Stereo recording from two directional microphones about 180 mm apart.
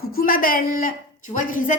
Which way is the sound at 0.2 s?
50° left (ahead or behind).